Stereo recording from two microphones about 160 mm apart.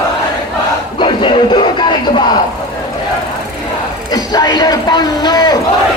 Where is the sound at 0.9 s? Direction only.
30° left (ahead or behind).